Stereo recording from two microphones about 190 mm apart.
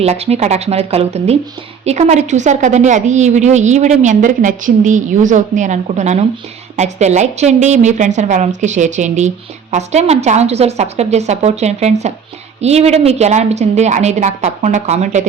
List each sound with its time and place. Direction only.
0.0 s a woman's voice: 35° right (ahead or behind)